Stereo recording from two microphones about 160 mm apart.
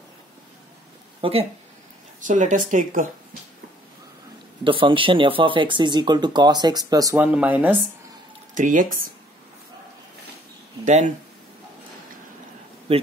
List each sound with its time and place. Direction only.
1.2 s speech: 40° right (ahead or behind)
2.1 s speech: 50° right (ahead or behind)
4.6 s speech: 30° right (ahead or behind)
7.2 s speech: 10° right (ahead or behind)
8.5 s speech: 55° right (ahead or behind)
10.9 s speech: 50° right (ahead or behind)
12.9 s speech: 40° right (ahead or behind)